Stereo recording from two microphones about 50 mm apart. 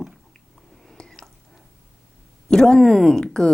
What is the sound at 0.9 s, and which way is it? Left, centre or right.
Whispering, centre.